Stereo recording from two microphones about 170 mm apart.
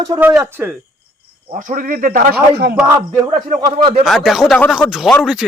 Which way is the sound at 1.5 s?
50° right (ahead or behind).